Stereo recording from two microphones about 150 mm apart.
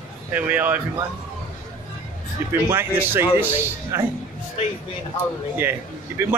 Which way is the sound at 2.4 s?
15° right (ahead or behind).